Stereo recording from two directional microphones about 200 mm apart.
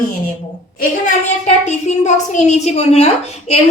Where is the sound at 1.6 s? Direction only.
35° left (ahead or behind).